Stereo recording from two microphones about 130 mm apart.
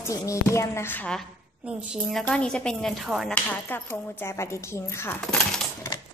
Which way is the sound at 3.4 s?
15° left (ahead or behind).